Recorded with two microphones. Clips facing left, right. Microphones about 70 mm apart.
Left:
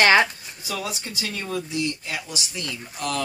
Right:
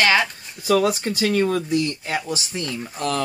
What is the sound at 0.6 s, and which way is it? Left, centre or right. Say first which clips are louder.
Speech: right 12 dB; right.